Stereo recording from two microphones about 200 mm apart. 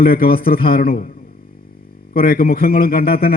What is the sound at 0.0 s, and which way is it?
A man's voice, 45° left (ahead or behind).